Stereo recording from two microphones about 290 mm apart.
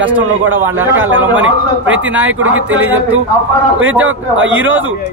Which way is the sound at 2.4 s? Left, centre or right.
Right.